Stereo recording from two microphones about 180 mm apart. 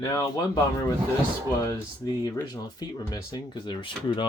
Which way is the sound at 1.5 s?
20° left (ahead or behind).